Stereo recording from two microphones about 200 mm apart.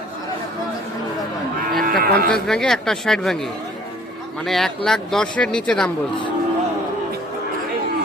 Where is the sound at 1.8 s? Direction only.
45° right (ahead or behind).